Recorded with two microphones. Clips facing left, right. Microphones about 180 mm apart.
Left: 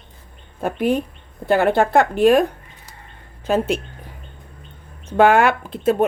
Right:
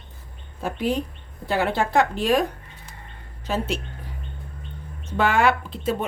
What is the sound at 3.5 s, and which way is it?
Speech, 55° left (ahead or behind).